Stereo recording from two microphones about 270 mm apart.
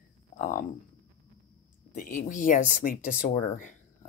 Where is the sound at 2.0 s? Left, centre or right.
Left.